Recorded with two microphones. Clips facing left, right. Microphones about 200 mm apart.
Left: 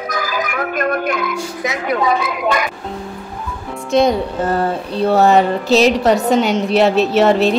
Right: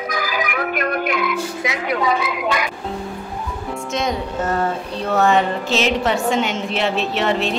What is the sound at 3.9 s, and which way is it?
Speech, 35° left (ahead or behind).